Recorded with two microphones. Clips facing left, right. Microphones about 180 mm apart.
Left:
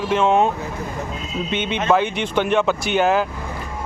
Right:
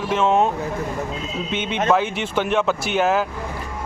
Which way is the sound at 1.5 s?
Centre (ahead or behind).